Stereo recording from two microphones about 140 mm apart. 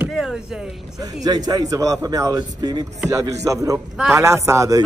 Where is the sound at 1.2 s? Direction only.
30° right (ahead or behind).